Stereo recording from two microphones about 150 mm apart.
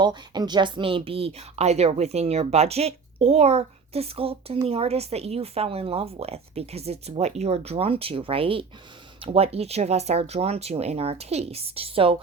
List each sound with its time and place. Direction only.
0.0 s speech: 30° right (ahead or behind)